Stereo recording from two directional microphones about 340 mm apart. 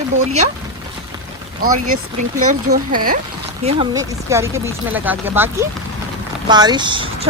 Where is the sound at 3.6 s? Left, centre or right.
Centre.